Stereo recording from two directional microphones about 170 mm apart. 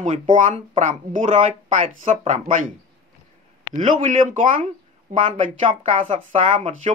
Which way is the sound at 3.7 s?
45° right (ahead or behind).